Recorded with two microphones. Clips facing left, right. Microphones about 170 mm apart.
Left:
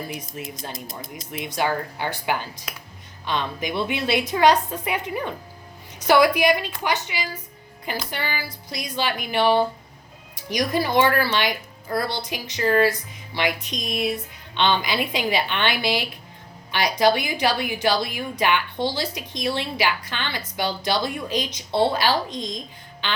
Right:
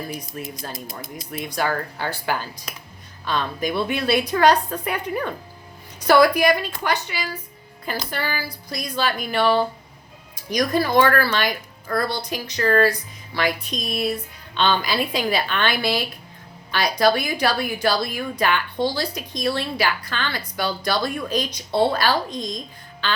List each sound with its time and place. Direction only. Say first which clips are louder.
0.5 s a woman's voice: right 1 dB; 20° left (ahead or behind)
10.7 s a woman's voice: right 2 dB; 20° left (ahead or behind)
23.0 s quack: right 2 dB; 20° left (ahead or behind)